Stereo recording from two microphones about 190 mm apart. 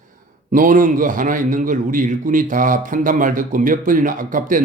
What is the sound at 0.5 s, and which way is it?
Speech, 45° right (ahead or behind).